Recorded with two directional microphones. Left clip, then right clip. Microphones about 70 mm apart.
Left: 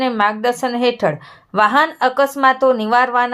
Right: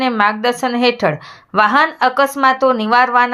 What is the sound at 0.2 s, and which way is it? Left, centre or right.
A woman's voice, right.